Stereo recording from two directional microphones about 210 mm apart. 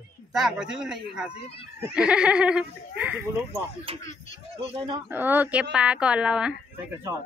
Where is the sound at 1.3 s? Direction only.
30° left (ahead or behind).